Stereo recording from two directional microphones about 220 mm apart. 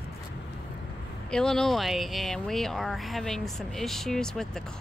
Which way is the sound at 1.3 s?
5° left (ahead or behind).